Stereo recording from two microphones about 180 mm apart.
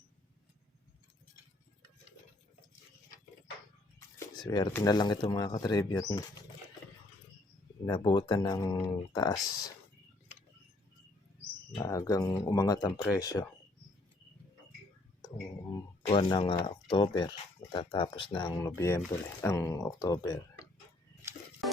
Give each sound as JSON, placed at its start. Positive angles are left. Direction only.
{"t": 4.4, "sound": "speech", "side_deg": 25}
{"t": 7.9, "sound": "speech", "side_deg": 25}
{"t": 11.7, "sound": "speech", "side_deg": 20}
{"t": 16.0, "sound": "speech", "side_deg": 30}